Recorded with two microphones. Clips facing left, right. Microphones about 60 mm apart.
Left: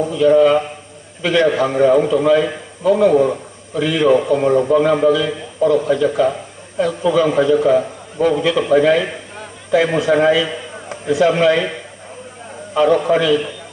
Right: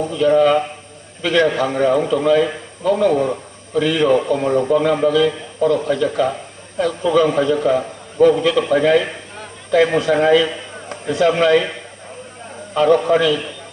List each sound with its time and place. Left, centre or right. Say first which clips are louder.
0.2 s a man's voice: left 2 dB; centre
12.7 s a man's voice: even; centre